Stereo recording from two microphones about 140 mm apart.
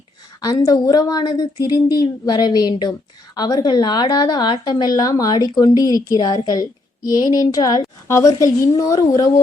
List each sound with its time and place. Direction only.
0.4 s a woman's voice: 30° left (ahead or behind)